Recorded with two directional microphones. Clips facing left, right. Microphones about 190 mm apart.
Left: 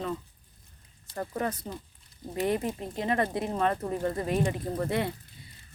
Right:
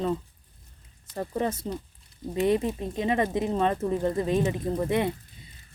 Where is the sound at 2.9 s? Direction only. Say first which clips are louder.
Right 3 dB; 20° right (ahead or behind).